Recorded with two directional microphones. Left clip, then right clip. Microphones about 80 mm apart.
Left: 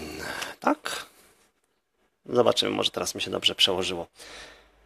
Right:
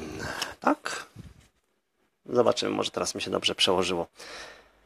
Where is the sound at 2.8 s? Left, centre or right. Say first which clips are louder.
Left 2 dB; right.